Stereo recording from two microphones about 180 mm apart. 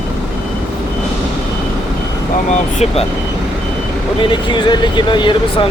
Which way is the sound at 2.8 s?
35° left (ahead or behind).